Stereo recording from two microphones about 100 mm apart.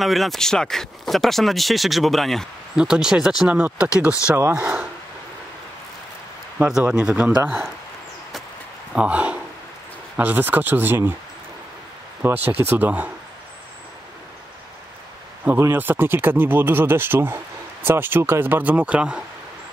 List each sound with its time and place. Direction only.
0.0 s speech: centre (ahead or behind)
4.4 s speech: 20° right (ahead or behind)
6.6 s speech: 15° right (ahead or behind)
8.9 s speech: 15° right (ahead or behind)
12.2 s speech: 20° right (ahead or behind)
15.4 s speech: 20° right (ahead or behind)